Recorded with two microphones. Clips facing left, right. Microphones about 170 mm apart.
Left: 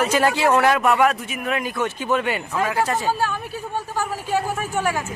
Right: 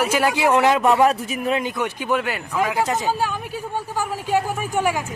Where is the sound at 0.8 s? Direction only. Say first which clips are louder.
Right 2 dB; 30° right (ahead or behind).